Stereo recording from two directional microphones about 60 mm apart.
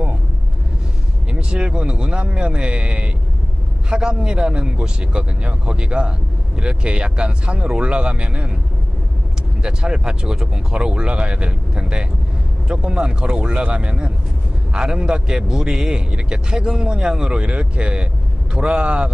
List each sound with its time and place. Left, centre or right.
1.3 s speech: centre
9.6 s speech: centre